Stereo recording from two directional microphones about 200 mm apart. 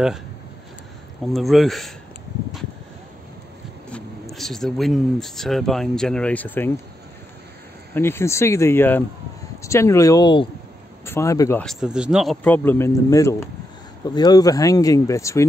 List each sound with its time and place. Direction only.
1.2 s speech: centre (ahead or behind)
3.9 s speech: centre (ahead or behind)
7.9 s speech: 10° left (ahead or behind)
11.6 s speech: centre (ahead or behind); by 15.4 s 15° left (ahead or behind)